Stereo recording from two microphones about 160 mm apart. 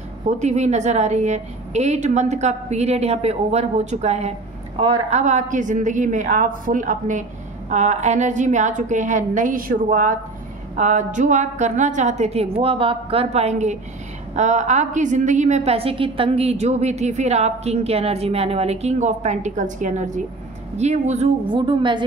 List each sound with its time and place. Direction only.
0.4 s a woman's voice: 45° right (ahead or behind)
21.5 s a woman's voice: 30° right (ahead or behind)